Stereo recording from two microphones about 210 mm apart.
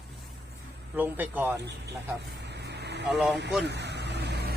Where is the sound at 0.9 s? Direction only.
10° right (ahead or behind).